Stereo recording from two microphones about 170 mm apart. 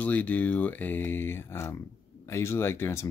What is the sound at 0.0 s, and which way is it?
Speech, 10° left (ahead or behind).